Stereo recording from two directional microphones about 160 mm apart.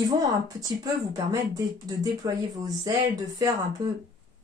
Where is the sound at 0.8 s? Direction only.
25° right (ahead or behind).